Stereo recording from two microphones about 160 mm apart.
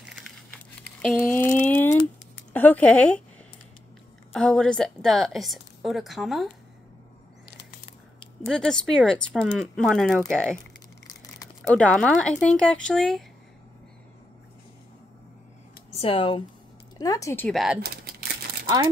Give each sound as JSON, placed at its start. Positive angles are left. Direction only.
{"t": 1.2, "sound": "a sound", "side_deg": 10}
{"t": 2.5, "sound": "speech", "side_deg": 10}
{"t": 4.3, "sound": "a woman's voice", "side_deg": 5}
{"t": 8.5, "sound": "a woman's voice", "side_deg": 5}
{"t": 11.1, "sound": "a sound", "side_deg": 20}
{"t": 11.6, "sound": "a woman's voice", "side_deg": 5}
{"t": 15.9, "sound": "speech", "side_deg": 35}
{"t": 17.0, "sound": "speech", "side_deg": 20}
{"t": 17.5, "sound": "a woman's voice", "side_deg": 0}